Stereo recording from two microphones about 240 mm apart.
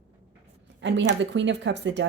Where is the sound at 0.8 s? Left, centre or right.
Right.